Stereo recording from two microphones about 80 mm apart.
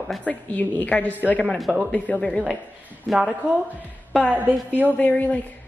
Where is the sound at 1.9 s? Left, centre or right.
Centre.